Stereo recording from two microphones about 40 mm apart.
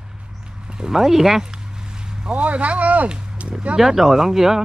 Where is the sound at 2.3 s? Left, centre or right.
Right.